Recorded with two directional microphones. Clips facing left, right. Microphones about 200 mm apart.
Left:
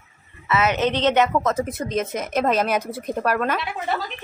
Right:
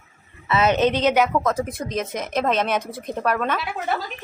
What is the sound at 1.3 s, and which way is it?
Speech, 5° left (ahead or behind).